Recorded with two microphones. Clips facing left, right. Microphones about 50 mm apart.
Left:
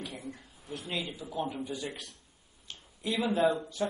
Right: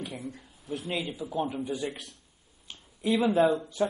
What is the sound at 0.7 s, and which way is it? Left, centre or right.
Speech, centre.